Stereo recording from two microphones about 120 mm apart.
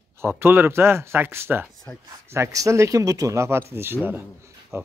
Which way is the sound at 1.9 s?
15° left (ahead or behind).